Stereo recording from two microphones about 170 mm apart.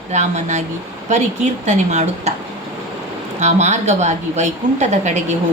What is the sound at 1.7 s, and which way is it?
Speech, 40° right (ahead or behind).